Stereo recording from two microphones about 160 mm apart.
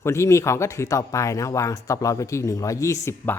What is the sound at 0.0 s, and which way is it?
A man's voice, 15° left (ahead or behind).